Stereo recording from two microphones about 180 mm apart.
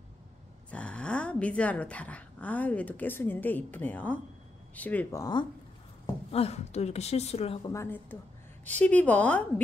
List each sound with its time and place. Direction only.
0.7 s a woman's voice: 5° left (ahead or behind)
5.2 s speech: 25° left (ahead or behind)
6.3 s a woman's voice: 35° left (ahead or behind)
7.7 s a woman's voice: 15° left (ahead or behind)